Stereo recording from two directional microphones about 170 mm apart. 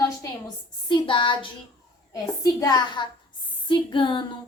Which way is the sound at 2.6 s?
25° left (ahead or behind).